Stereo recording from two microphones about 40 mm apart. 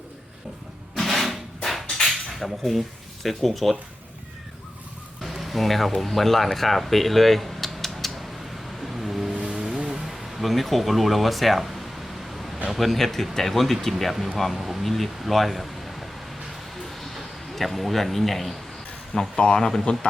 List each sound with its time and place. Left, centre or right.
0.9 s a sound: centre
3.2 s speech: centre
5.2 s speech: centre
8.8 s vehicle: centre
9.3 s vehicle: centre
9.9 s a sound: centre
12.6 s speech: centre
16.8 s a sound: centre
19.4 s speech: centre
19.8 s a man's voice: left